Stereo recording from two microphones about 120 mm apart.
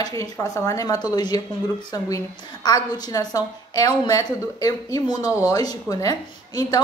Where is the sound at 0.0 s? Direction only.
30° left (ahead or behind).